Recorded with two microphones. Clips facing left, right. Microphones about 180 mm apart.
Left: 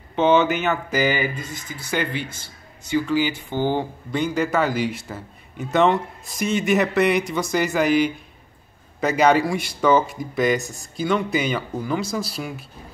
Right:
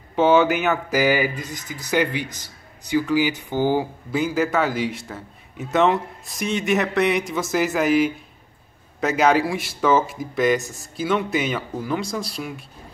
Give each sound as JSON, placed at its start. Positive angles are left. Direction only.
{"t": 0.1, "sound": "speech", "side_deg": -5}
{"t": 2.2, "sound": "a sound", "side_deg": -40}
{"t": 2.9, "sound": "speech", "side_deg": -10}